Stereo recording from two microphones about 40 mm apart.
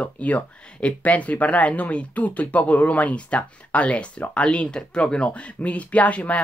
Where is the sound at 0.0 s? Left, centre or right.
Left.